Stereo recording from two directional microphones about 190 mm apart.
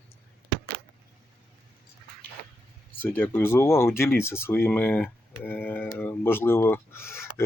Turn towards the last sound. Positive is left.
turn(degrees=15)  # may be behind; listen again after turning